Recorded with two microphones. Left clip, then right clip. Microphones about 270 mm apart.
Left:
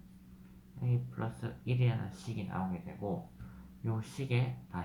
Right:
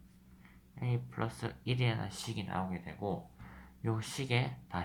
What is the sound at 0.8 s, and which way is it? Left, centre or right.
Speech, right.